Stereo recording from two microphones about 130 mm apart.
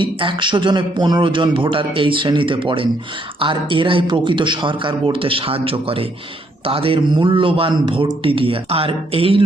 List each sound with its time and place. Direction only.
0.0 s a man's voice: 40° right (ahead or behind)